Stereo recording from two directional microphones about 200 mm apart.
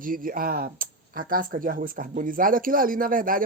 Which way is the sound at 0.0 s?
45° right (ahead or behind).